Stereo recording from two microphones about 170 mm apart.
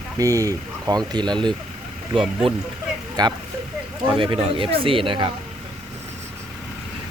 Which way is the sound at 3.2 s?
25° right (ahead or behind).